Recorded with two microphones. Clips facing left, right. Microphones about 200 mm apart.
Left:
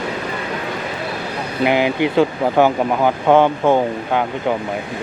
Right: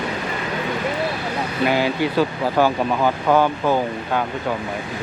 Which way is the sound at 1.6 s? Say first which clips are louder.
Left 4 dB; 15° left (ahead or behind).